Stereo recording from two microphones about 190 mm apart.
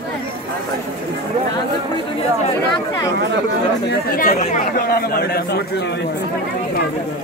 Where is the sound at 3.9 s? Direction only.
50° left (ahead or behind).